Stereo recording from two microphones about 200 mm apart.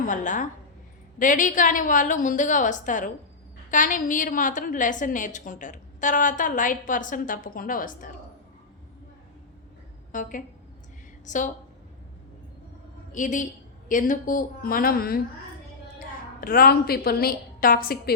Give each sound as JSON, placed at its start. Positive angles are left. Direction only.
{"t": 0.0, "sound": "a woman's voice", "side_deg": 40}
{"t": 10.1, "sound": "a woman's voice", "side_deg": 40}
{"t": 13.1, "sound": "a woman's voice", "side_deg": 40}
{"t": 16.4, "sound": "a woman's voice", "side_deg": 45}